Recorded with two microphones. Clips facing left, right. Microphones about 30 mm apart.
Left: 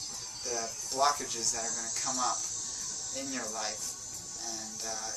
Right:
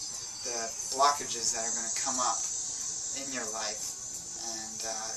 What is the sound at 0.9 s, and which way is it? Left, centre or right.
Speech, centre.